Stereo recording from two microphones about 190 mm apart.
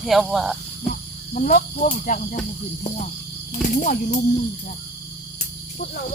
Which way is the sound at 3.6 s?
45° left (ahead or behind).